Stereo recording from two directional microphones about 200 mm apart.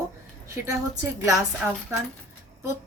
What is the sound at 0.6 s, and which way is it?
Speech, 15° right (ahead or behind).